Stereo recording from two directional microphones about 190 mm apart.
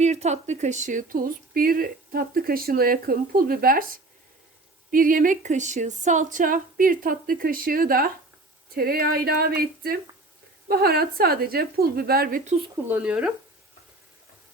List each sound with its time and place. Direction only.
0.0 s speech: 35° right (ahead or behind); by 12.4 s 55° right (ahead or behind)
12.9 s speech: 5° right (ahead or behind)